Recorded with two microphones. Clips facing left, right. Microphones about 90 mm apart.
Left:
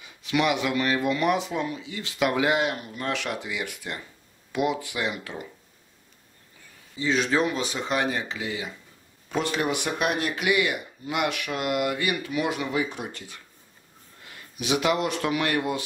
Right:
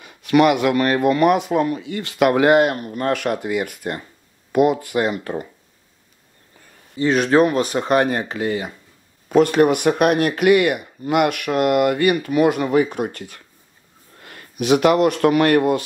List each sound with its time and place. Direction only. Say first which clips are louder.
0.0 s speech: right 10 dB; 55° right (ahead or behind)
7.0 s speech: right 8 dB; 55° right (ahead or behind)